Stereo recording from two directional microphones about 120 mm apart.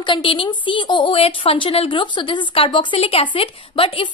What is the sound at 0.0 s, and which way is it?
A woman's voice, 45° left (ahead or behind).